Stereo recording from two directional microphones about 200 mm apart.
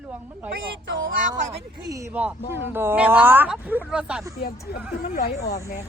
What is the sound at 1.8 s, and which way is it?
Speech, 15° right (ahead or behind).